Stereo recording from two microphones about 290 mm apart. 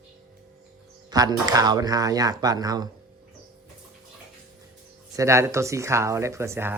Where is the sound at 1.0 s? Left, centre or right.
Centre.